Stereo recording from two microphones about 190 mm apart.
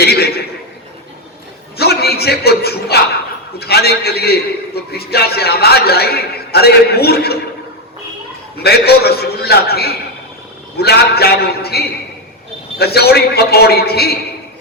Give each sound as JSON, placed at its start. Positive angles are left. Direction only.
{"t": 0.0, "sound": "a man's voice", "side_deg": 55}
{"t": 1.8, "sound": "a man's voice", "side_deg": 55}
{"t": 8.6, "sound": "a man's voice", "side_deg": 55}